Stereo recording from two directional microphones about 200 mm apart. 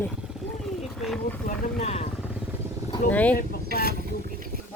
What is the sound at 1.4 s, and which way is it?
Speech, 40° left (ahead or behind).